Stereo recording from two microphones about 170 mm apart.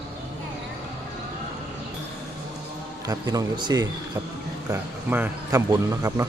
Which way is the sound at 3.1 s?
25° right (ahead or behind).